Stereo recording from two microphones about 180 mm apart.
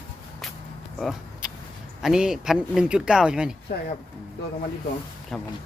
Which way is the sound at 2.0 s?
5° right (ahead or behind).